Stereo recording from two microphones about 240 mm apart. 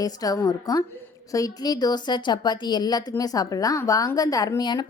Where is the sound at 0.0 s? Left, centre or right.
Centre.